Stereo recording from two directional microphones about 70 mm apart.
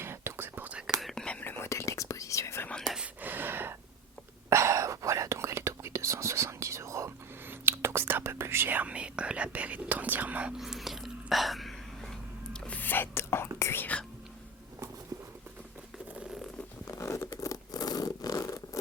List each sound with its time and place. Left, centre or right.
0.0 s whispering: right
0.9 s whispering: centre
1.4 s whispering: left
1.6 s whispering: left
3.2 s a sound: right
4.4 s whispering: right
10.6 s whispering: centre
12.5 s whispering: centre; by 13.8 s left
16.8 s patter: left
17.4 s scratch: left